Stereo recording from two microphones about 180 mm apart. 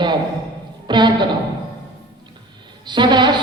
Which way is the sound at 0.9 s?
25° right (ahead or behind).